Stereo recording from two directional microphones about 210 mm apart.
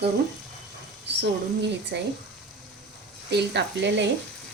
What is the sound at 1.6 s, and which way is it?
Speech, 55° right (ahead or behind).